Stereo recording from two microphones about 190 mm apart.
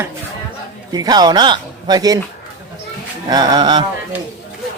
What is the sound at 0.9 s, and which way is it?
Speech, 20° right (ahead or behind).